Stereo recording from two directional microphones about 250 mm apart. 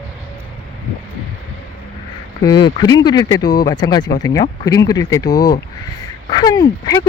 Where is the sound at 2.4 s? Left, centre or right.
Centre.